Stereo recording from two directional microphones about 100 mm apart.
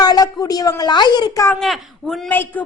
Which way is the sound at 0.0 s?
40° left (ahead or behind).